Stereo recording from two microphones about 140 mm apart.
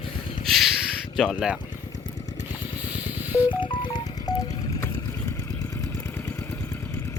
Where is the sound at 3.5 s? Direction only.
35° left (ahead or behind).